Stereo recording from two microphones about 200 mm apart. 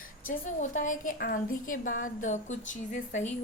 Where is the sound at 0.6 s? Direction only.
40° left (ahead or behind).